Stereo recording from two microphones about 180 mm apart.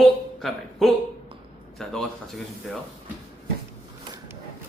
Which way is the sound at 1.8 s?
5° left (ahead or behind).